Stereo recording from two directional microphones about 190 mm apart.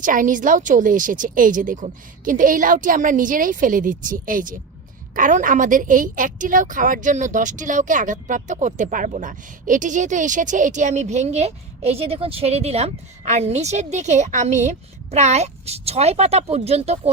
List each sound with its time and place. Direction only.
0.0 s a woman's voice: 45° right (ahead or behind)